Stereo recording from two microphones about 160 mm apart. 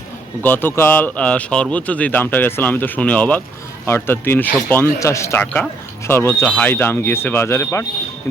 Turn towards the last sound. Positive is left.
turn(degrees=15)  # may be behind; listen again after turning